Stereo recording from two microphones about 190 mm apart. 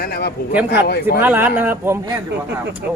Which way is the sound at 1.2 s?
10° right (ahead or behind).